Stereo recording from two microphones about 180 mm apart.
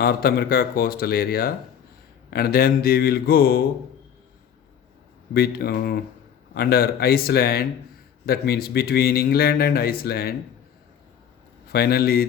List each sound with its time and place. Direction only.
0.0 s a man's voice: 60° left (ahead or behind)
5.3 s a man's voice: 60° left (ahead or behind)
11.7 s a man's voice: 60° left (ahead or behind)